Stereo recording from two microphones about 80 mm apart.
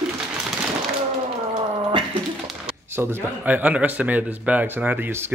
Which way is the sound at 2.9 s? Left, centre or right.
Right.